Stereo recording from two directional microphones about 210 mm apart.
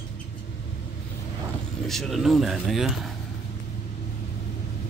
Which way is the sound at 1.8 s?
Centre (ahead or behind).